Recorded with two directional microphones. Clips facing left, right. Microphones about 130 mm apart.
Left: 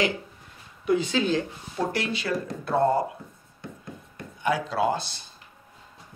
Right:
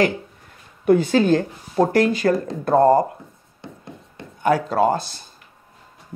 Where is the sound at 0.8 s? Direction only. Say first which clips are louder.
Right 8 dB; 50° right (ahead or behind).